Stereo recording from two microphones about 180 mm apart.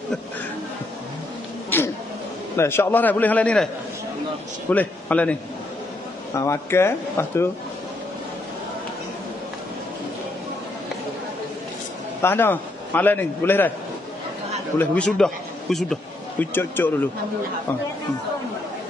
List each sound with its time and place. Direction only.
2.5 s speech: 15° left (ahead or behind)
4.6 s speech: 10° left (ahead or behind)
12.2 s a man's voice: 10° left (ahead or behind)
14.8 s a man's voice: 5° left (ahead or behind)